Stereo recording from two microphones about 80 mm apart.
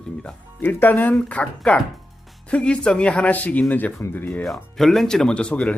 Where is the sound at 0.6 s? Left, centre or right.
Left.